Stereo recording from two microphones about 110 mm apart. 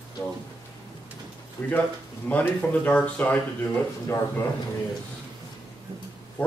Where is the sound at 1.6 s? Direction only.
20° left (ahead or behind).